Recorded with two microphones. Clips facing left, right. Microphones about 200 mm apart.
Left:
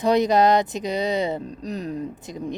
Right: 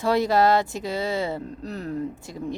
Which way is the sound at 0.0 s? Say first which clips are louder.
Left 2 dB; 20° left (ahead or behind).